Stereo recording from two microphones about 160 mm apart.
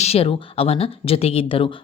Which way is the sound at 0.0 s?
40° left (ahead or behind).